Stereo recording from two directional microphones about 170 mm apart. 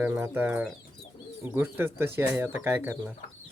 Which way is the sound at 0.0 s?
15° right (ahead or behind).